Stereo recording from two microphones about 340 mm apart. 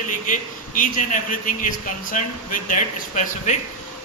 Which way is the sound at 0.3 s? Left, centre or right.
Left.